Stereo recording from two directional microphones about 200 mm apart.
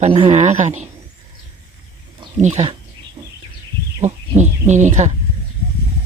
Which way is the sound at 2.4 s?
35° right (ahead or behind).